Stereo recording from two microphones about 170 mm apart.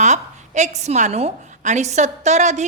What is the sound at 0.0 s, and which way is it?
A woman's voice, 45° right (ahead or behind).